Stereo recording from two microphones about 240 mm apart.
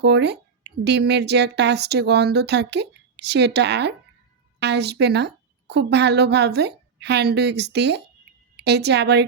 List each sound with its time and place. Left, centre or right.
0.0 s a woman's voice: right